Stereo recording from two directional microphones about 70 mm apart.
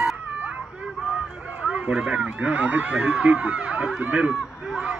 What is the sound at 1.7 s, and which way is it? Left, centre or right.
Speech, centre.